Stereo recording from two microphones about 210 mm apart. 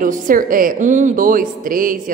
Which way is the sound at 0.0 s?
40° right (ahead or behind).